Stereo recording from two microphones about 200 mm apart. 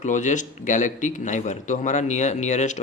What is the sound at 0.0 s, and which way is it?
Speech, 40° left (ahead or behind).